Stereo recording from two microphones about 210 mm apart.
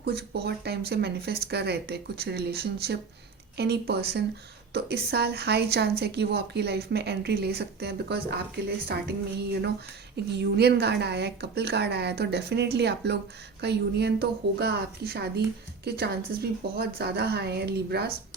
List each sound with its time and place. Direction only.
0.0 s speech: 50° right (ahead or behind)